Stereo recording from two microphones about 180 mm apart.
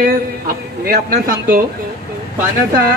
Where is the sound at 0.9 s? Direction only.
55° right (ahead or behind).